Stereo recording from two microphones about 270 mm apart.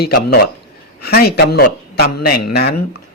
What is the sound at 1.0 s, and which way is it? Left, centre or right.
Speech, left.